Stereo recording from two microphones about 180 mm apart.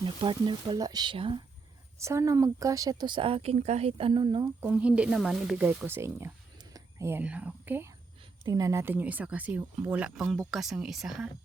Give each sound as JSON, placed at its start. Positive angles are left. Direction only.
{"t": 0.0, "sound": "speech", "side_deg": -30}
{"t": 2.0, "sound": "speech", "side_deg": -15}
{"t": 4.6, "sound": "speech", "side_deg": -5}
{"t": 8.2, "sound": "speech", "side_deg": -20}